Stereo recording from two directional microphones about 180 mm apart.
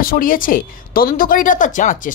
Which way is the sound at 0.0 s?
50° left (ahead or behind).